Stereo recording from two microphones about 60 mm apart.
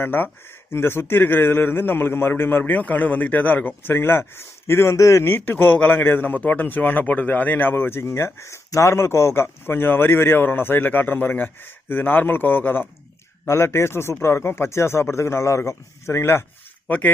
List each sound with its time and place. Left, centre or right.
0.0 s a man's voice: left
5.2 s a man's voice: left
13.5 s speech: left